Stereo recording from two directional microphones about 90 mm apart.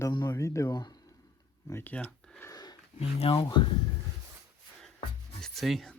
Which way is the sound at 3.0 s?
90° left.